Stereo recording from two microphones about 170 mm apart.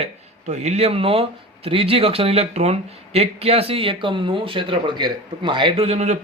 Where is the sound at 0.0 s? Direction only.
40° right (ahead or behind).